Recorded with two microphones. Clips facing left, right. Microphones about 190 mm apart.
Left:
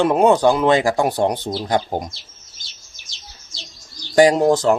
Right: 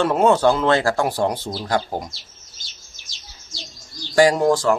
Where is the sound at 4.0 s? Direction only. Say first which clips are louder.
Left 2 dB; 20° left (ahead or behind).